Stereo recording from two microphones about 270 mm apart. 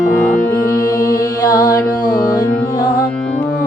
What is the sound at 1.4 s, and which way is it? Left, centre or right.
Music, centre.